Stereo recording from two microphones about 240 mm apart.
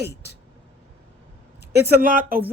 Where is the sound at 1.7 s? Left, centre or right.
Right.